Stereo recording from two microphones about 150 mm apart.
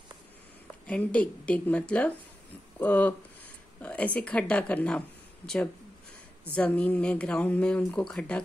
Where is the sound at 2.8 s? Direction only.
10° left (ahead or behind).